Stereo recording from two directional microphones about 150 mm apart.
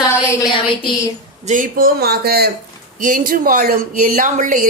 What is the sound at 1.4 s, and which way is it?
Speech, 65° right (ahead or behind).